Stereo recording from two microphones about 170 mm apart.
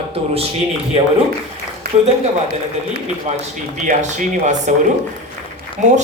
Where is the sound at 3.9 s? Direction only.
45° right (ahead or behind).